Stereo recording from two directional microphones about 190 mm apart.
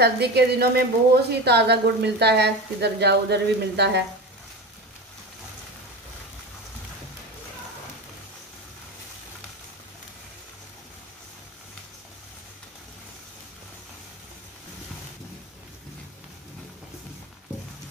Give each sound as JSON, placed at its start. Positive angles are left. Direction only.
{"t": 0.0, "sound": "a woman's voice", "side_deg": -60}